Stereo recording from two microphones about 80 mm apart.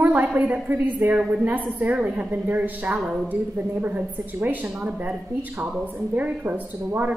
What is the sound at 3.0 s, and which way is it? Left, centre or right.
Speech, centre.